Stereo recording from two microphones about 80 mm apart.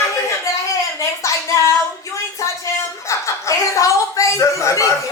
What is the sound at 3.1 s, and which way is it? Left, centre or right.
A woman's voice, left.